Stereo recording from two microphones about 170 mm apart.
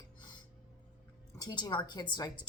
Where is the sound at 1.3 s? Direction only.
25° left (ahead or behind).